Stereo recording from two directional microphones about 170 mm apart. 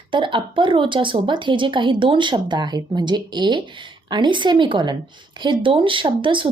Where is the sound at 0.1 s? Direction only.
30° right (ahead or behind).